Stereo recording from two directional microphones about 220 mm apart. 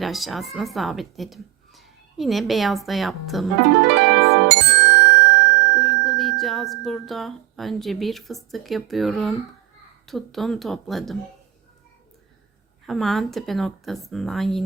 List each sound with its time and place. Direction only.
0.0 s a woman's voice: centre (ahead or behind)
3.8 s music: 50° right (ahead or behind)
5.8 s a woman's voice: centre (ahead or behind)
12.8 s a woman's voice: centre (ahead or behind)